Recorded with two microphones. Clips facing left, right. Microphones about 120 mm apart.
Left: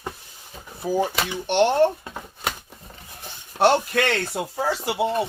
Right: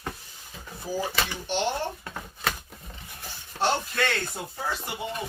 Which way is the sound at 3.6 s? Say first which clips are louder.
Left 7 dB; 65° left (ahead or behind).